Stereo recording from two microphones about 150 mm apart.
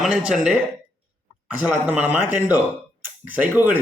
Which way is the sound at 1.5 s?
10° right (ahead or behind).